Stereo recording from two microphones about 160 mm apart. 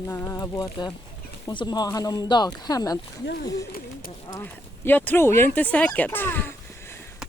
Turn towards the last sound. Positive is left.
turn(degrees=15)  # may be behind; listen again after turning